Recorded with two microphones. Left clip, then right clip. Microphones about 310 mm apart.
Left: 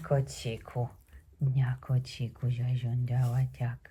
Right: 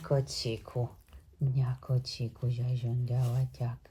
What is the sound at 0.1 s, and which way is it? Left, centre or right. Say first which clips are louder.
Speech: right 1 dB; centre.